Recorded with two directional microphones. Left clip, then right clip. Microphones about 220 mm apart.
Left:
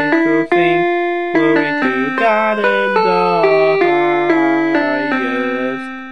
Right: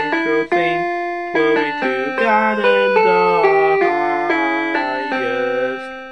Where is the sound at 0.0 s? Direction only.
50° left (ahead or behind).